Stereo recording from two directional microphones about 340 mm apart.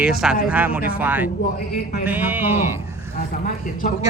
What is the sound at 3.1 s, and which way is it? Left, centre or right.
Speech, left.